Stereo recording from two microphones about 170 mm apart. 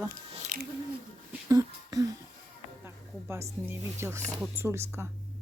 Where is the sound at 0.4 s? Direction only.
55° right (ahead or behind).